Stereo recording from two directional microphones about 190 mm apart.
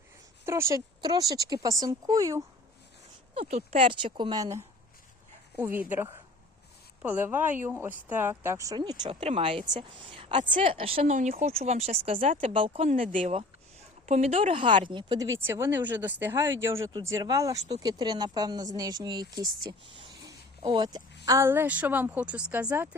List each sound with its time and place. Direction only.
0.4 s speech: 15° right (ahead or behind)
3.3 s speech: 35° right (ahead or behind); by 5.8 s 10° right (ahead or behind)
7.0 s speech: 10° right (ahead or behind); by 13.1 s 30° right (ahead or behind)
14.1 s speech: 35° right (ahead or behind)
15.4 s speech: 10° right (ahead or behind)
20.6 s speech: 25° right (ahead or behind)